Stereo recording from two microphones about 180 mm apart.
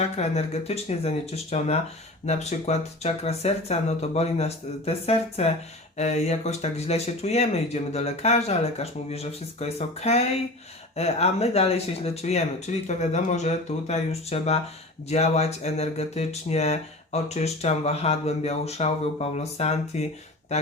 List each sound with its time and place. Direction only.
0.2 s speech: 35° left (ahead or behind)